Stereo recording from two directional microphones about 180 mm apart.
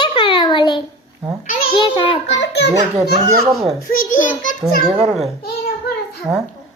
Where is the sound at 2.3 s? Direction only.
70° left (ahead or behind).